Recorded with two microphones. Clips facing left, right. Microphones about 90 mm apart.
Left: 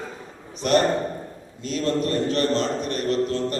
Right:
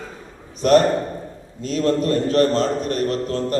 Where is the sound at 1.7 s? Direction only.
40° right (ahead or behind).